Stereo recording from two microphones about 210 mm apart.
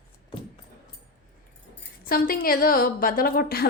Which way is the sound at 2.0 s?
45° left (ahead or behind).